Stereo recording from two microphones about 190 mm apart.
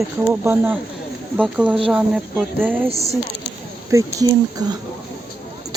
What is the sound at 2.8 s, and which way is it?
Speech, 35° right (ahead or behind).